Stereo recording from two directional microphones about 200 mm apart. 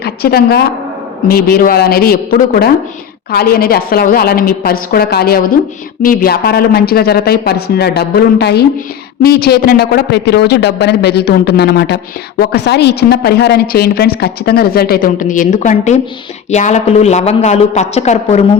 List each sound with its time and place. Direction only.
0.0 s a woman's voice: 50° left (ahead or behind); by 18.4 s 35° left (ahead or behind)